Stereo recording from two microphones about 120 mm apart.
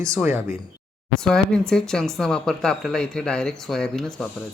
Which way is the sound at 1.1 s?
5° left (ahead or behind).